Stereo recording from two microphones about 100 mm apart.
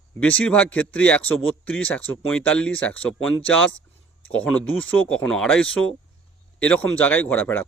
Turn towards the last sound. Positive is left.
turn(degrees=15)  # may be behind; listen again after turning